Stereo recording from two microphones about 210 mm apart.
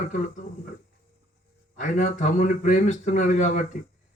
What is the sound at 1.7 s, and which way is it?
A man's voice, 35° left (ahead or behind).